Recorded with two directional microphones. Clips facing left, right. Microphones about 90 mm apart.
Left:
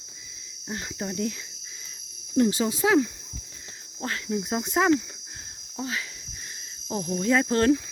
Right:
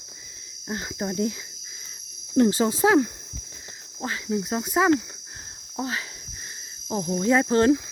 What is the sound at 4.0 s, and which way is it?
Speech, 15° right (ahead or behind).